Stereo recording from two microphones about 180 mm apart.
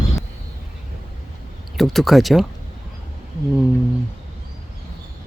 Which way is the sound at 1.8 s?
Centre (ahead or behind).